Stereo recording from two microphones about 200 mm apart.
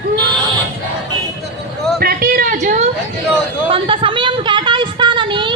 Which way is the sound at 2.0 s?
50° right (ahead or behind).